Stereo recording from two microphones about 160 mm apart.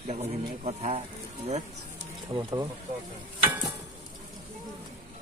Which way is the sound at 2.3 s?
25° right (ahead or behind).